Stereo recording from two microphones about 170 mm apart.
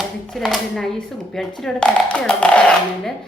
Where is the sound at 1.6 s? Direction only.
5° left (ahead or behind).